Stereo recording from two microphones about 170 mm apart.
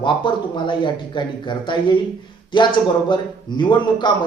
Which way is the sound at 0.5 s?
30° left (ahead or behind).